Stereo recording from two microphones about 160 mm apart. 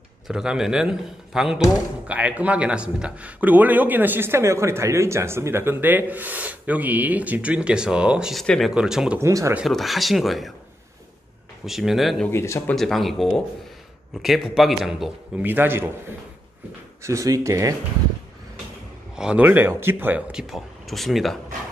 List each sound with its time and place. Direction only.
0.3 s a man's voice: 5° right (ahead or behind)
9.2 s a man's voice: 20° right (ahead or behind)
9.6 s a man's voice: centre (ahead or behind)
11.6 s a man's voice: centre (ahead or behind)
12.3 s speech: 15° left (ahead or behind)
12.7 s a man's voice: centre (ahead or behind)
17.0 s speech: 20° right (ahead or behind)
19.1 s a man's voice: 5° right (ahead or behind)